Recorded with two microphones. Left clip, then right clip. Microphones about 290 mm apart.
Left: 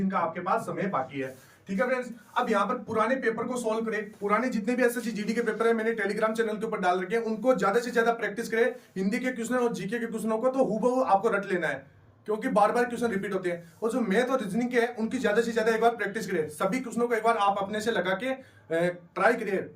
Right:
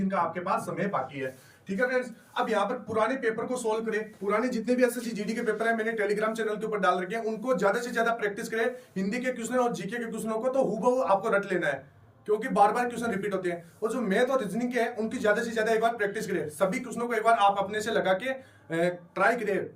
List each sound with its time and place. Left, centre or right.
2.3 s speech: centre